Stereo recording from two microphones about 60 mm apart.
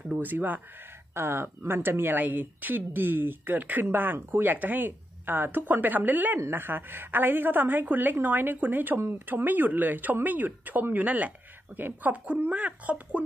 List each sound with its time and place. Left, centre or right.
0.1 s speech: right